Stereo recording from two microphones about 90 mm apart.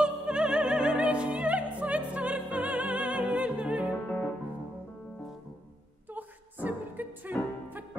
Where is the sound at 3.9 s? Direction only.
15° left (ahead or behind).